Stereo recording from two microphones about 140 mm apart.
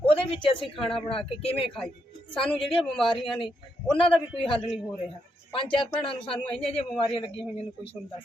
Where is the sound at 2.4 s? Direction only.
5° left (ahead or behind).